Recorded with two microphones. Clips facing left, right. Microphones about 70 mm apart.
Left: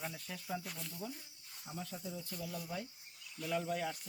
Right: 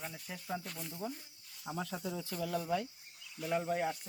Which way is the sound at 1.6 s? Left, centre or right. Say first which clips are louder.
Right 6 dB; right.